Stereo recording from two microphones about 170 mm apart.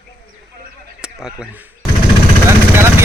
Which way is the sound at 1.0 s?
5° right (ahead or behind).